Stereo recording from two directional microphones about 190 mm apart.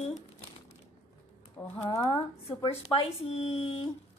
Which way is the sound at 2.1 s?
30° left (ahead or behind).